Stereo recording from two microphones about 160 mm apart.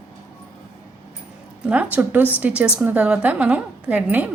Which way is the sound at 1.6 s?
10° right (ahead or behind).